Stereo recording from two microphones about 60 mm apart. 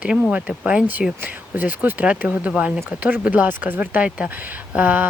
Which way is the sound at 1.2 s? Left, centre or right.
Right.